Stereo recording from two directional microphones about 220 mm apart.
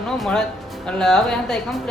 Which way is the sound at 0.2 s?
Centre (ahead or behind).